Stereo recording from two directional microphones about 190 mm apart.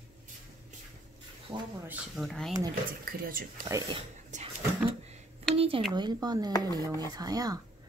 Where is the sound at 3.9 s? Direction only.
30° right (ahead or behind).